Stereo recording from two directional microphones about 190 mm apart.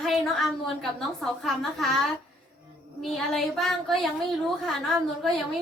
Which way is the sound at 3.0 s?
Centre (ahead or behind).